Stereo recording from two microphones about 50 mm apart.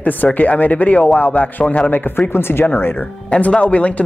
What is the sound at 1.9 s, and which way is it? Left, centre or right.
Speech, left.